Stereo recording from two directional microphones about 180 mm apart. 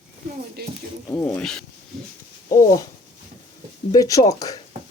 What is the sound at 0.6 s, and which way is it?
Music, 60° right (ahead or behind).